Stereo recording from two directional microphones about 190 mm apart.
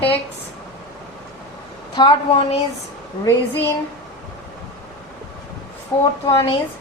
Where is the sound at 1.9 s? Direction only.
30° left (ahead or behind).